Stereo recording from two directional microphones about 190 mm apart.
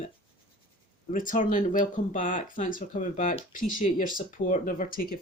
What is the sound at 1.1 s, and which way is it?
Speech, 45° left (ahead or behind).